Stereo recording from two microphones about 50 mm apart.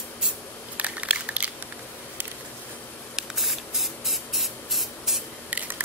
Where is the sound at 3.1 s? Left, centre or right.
Centre.